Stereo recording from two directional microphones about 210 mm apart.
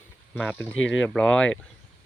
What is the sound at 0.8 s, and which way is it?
Speech, 65° left (ahead or behind).